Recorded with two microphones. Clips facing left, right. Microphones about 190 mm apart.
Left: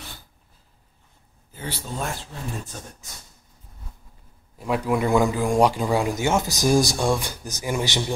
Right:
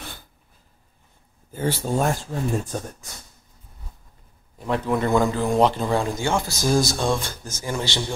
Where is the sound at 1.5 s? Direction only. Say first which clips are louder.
Right 9 dB; 50° right (ahead or behind).